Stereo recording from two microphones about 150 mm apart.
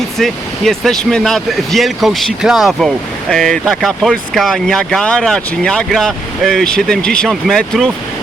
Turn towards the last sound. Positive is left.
turn(degrees=5)  # may be behind; listen again after turning